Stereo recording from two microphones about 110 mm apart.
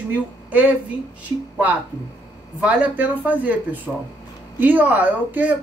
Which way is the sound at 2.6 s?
15° right (ahead or behind).